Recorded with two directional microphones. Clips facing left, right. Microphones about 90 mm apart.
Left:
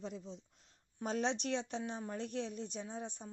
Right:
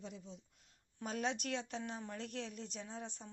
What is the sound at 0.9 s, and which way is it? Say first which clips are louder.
Speech: left 4 dB; 25° left (ahead or behind).